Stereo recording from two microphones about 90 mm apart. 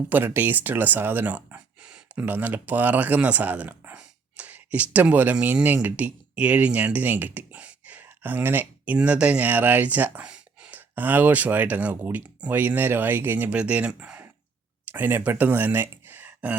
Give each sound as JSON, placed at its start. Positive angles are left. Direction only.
{"t": 0.1, "sound": "speech", "side_deg": -25}
{"t": 13.5, "sound": "speech", "side_deg": -15}